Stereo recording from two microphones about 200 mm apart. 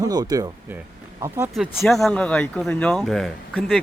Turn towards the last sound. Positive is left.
turn(degrees=0)  # may be behind; listen again after turning